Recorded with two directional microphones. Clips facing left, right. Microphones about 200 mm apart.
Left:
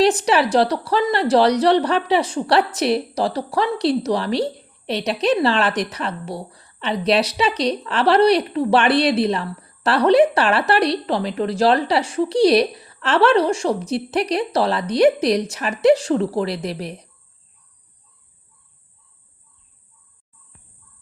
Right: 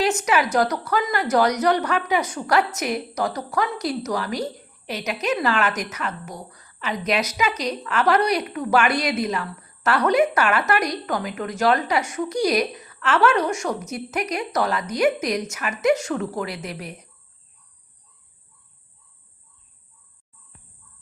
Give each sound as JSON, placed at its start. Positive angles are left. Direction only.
{"t": 0.0, "sound": "a woman's voice", "side_deg": 35}